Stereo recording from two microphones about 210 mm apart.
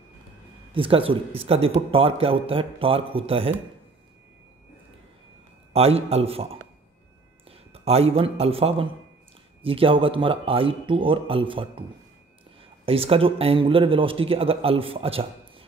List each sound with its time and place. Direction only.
0.7 s a man's voice: 25° right (ahead or behind)
5.7 s a man's voice: 30° right (ahead or behind)
7.7 s a man's voice: 30° right (ahead or behind)
12.8 s a man's voice: 25° right (ahead or behind)